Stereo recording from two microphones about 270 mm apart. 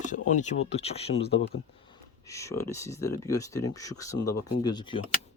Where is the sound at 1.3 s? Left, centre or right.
Left.